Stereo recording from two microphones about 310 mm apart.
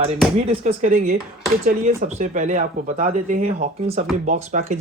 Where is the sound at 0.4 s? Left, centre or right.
Right.